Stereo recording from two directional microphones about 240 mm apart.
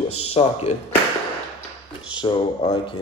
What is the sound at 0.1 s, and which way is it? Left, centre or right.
Speech, left.